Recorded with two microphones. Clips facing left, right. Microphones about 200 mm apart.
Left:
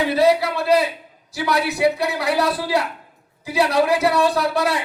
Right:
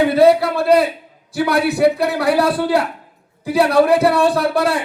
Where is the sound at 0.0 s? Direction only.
55° right (ahead or behind).